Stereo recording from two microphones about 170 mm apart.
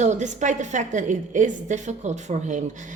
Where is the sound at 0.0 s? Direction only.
45° right (ahead or behind).